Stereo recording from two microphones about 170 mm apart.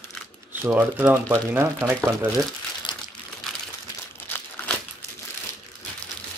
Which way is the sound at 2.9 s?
25° left (ahead or behind).